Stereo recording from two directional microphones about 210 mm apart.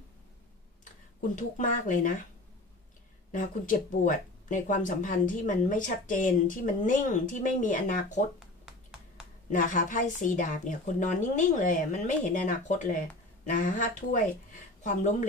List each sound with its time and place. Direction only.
1.2 s speech: 40° left (ahead or behind)
3.3 s speech: 40° left (ahead or behind)
9.5 s speech: 35° left (ahead or behind)